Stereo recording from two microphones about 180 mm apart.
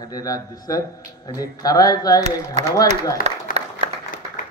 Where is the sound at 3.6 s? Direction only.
40° right (ahead or behind).